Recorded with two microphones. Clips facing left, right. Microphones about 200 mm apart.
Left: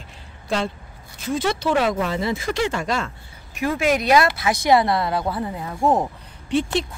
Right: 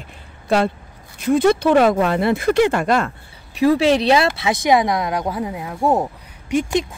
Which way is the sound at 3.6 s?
35° right (ahead or behind).